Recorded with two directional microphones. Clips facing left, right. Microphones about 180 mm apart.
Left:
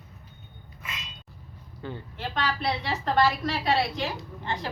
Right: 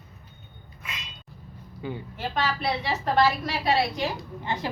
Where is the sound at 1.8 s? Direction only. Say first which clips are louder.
Right 3 dB; 10° right (ahead or behind).